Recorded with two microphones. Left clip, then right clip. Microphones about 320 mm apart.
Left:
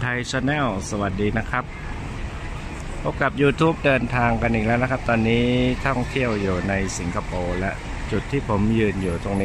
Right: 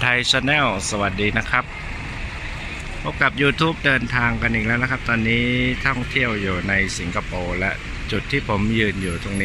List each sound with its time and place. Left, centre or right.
0.0 s speech: centre
3.1 s speech: centre